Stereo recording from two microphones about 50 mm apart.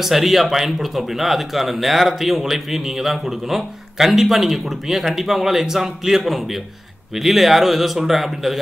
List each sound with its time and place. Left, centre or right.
0.0 s speech: centre